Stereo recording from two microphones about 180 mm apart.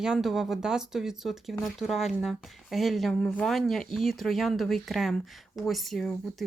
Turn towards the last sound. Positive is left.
turn(degrees=0)  # may be behind; listen again after turning